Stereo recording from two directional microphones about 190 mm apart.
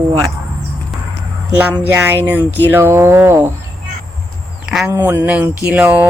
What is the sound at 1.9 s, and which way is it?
Speech, 10° right (ahead or behind).